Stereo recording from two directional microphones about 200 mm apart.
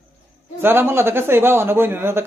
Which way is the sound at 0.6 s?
10° right (ahead or behind).